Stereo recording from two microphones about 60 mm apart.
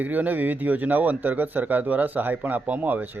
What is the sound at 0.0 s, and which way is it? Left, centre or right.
Speech, right.